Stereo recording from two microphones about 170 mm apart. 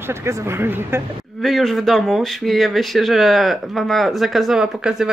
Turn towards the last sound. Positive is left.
turn(degrees=-5)  # may be behind; listen again after turning